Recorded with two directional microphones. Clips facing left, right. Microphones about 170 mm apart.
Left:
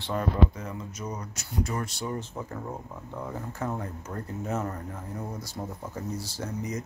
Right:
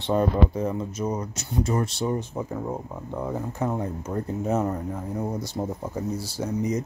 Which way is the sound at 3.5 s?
20° right (ahead or behind).